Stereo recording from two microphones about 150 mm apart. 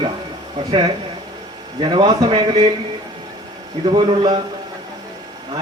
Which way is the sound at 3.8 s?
35° right (ahead or behind).